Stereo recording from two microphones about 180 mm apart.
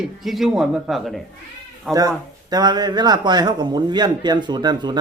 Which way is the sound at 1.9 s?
20° right (ahead or behind).